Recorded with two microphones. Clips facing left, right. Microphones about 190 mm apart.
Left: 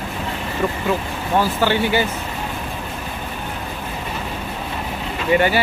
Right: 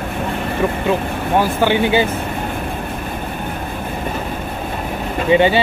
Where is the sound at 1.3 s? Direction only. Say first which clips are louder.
Right 2 dB; 15° right (ahead or behind).